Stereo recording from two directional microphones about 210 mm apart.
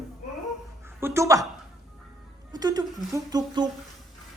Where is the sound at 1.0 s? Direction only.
10° right (ahead or behind).